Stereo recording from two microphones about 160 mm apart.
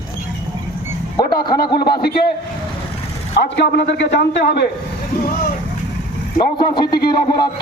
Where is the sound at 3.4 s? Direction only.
90° left.